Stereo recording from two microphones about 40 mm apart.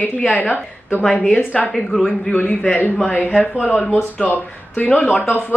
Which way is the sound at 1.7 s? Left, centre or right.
Centre.